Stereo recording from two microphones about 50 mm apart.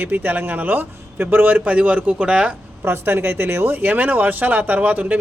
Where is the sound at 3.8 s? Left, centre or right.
Right.